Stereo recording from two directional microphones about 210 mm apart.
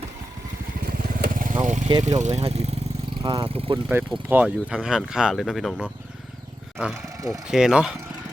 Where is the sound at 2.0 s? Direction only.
35° right (ahead or behind).